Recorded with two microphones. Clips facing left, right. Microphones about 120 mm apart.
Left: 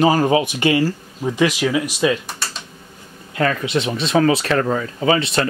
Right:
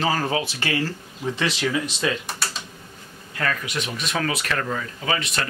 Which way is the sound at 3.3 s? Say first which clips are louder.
Left 8 dB; 25° left (ahead or behind).